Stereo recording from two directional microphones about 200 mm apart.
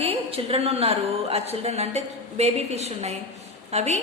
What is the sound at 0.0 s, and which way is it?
A woman's voice, 30° right (ahead or behind).